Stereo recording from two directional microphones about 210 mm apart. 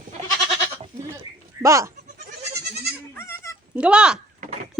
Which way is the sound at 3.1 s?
10° left (ahead or behind).